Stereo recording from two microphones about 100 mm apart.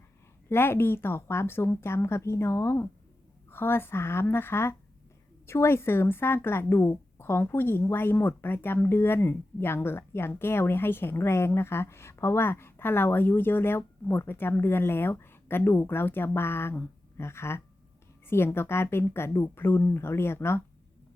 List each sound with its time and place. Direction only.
0.4 s speech: 25° left (ahead or behind)